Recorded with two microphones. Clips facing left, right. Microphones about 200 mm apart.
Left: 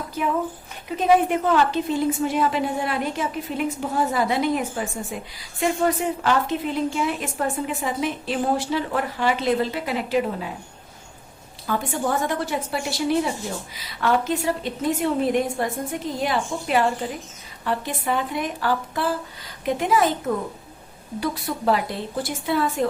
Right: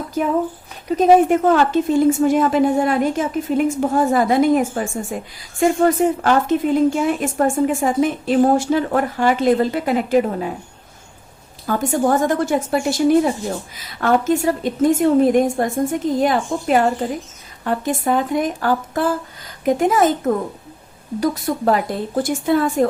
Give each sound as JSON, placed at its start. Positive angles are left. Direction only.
{"t": 0.2, "sound": "a woman's voice", "side_deg": -40}
{"t": 11.6, "sound": "a woman's voice", "side_deg": -45}